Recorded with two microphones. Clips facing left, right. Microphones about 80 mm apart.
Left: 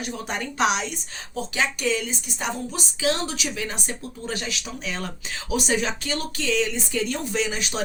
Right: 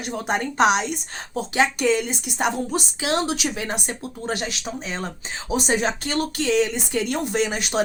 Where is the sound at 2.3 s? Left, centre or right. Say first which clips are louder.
Right 6 dB; right.